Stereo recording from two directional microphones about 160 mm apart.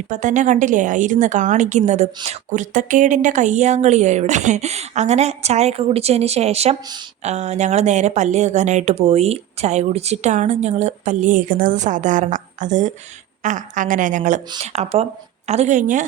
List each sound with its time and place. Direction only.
0.1 s speech: 50° right (ahead or behind)